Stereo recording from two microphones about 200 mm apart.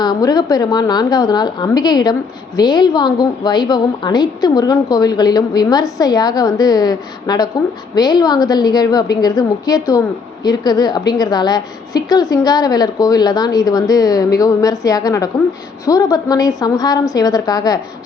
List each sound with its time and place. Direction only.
0.0 s a woman's voice: 20° left (ahead or behind)